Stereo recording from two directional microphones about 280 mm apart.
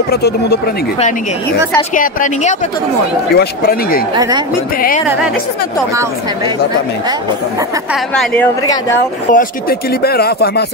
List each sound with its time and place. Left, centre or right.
0.1 s speech: left
2.0 s speech: left
4.1 s speech: centre
4.7 s speech: left
7.9 s a woman's voice: centre
9.3 s speech: left